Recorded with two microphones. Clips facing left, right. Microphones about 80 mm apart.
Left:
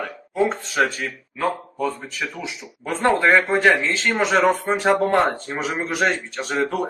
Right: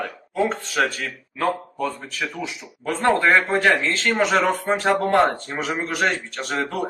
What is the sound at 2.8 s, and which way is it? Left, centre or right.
Speech, left.